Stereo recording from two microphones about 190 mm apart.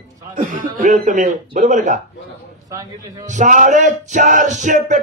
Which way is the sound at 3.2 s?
40° right (ahead or behind).